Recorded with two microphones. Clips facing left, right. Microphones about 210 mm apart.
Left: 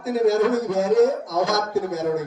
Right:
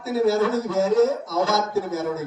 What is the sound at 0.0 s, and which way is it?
A man's voice, 15° left (ahead or behind).